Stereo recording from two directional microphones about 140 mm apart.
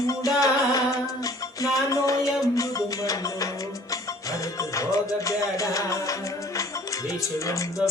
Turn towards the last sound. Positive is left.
turn(degrees=20)  # may be behind; listen again after turning